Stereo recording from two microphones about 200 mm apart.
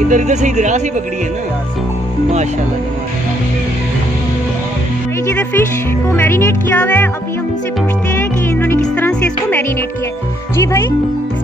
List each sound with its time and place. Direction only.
0.1 s speech: 35° right (ahead or behind)
5.2 s speech: 10° left (ahead or behind)
8.2 s music: 10° left (ahead or behind)
10.5 s speech: 15° left (ahead or behind)